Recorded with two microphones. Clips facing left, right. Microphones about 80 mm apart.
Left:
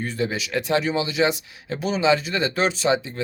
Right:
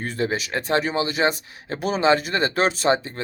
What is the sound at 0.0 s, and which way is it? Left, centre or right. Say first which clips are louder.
Speech: right 1 dB; right.